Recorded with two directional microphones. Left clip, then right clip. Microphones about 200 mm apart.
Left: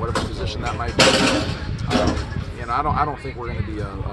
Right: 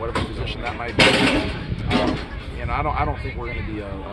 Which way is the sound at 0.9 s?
30° left (ahead or behind).